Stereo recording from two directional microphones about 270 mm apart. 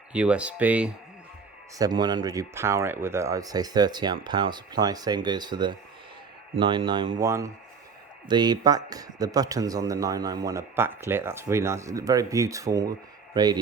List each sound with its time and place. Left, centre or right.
0.1 s speech: centre
1.8 s speech: centre